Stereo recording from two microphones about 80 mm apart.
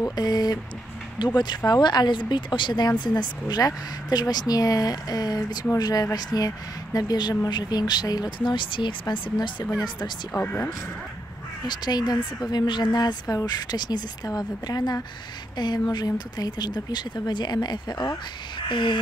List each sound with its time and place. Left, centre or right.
0.0 s speech: left
1.2 s speech: left
3.2 s speech: left
8.4 s speech: left
10.3 s speech: left
11.6 s speech: left
18.7 s caw: left